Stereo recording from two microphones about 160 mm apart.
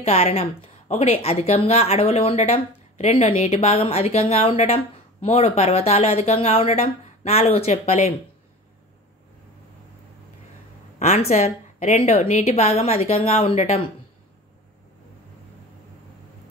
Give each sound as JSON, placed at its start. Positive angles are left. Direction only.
{"t": 0.0, "sound": "a woman's voice", "side_deg": 40}
{"t": 11.0, "sound": "a woman's voice", "side_deg": 45}